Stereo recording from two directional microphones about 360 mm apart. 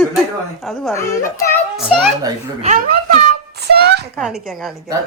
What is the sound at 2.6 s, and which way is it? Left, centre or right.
Speech, right.